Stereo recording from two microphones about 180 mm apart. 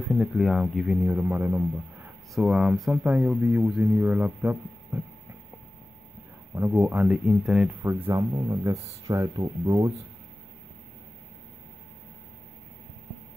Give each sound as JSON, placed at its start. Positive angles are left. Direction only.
{"t": 0.0, "sound": "speech", "side_deg": 0}
{"t": 2.3, "sound": "speech", "side_deg": 0}
{"t": 6.5, "sound": "speech", "side_deg": -10}
{"t": 7.9, "sound": "speech", "side_deg": -15}